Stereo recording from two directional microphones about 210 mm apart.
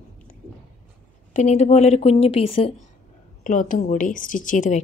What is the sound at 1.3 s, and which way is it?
A woman's voice, 35° left (ahead or behind).